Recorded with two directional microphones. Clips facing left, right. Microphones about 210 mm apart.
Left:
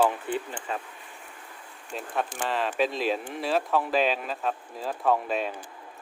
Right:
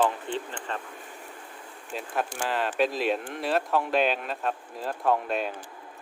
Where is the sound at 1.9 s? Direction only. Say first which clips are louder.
Even; centre (ahead or behind).